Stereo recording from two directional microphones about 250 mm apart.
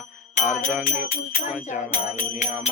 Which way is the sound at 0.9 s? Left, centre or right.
Left.